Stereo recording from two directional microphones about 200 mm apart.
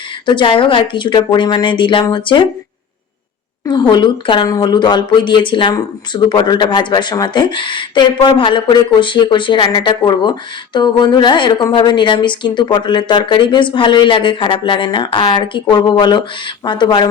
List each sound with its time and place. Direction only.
0.3 s a woman's voice: 25° left (ahead or behind)
3.7 s a woman's voice: 20° left (ahead or behind)